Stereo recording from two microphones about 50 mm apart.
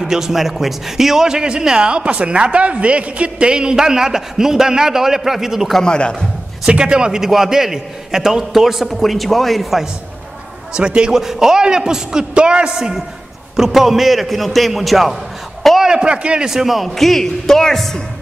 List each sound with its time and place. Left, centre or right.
0.0 s a man's voice: centre
5.9 s a man's voice: centre
6.7 s a man's voice: centre
10.7 s a man's voice: centre
12.7 s a man's voice: centre
15.8 s a man's voice: centre
16.4 s a man's voice: centre